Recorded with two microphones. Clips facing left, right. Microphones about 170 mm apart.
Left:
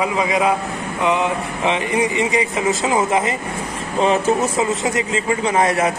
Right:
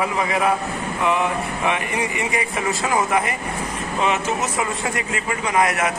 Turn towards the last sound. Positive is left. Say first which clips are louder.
# left 3 dB
turn(degrees=30)  # may be behind; listen again after turning